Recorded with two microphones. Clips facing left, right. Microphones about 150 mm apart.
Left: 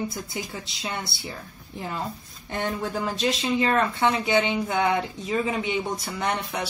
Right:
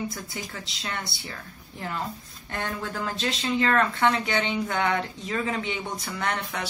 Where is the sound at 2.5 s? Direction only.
20° left (ahead or behind).